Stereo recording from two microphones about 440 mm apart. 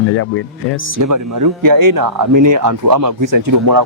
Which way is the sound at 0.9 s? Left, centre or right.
Right.